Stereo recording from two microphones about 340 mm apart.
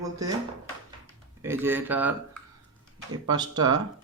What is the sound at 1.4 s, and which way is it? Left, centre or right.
A man's voice, centre.